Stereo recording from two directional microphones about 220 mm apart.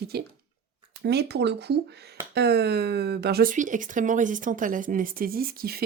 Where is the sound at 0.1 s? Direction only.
45° right (ahead or behind).